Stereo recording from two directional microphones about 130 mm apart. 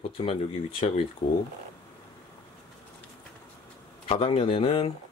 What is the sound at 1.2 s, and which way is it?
Speech, 55° left (ahead or behind).